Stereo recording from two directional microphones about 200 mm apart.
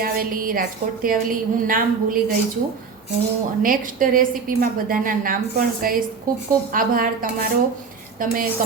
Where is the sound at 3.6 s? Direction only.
45° right (ahead or behind).